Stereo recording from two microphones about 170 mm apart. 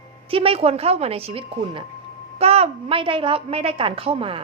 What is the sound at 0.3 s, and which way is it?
A woman's voice, 35° right (ahead or behind).